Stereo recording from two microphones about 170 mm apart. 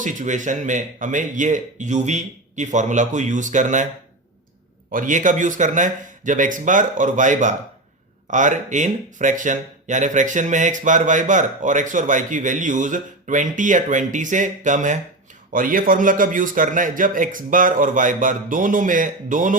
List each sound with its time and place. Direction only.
0.0 s speech: 50° right (ahead or behind)
4.9 s speech: 50° right (ahead or behind)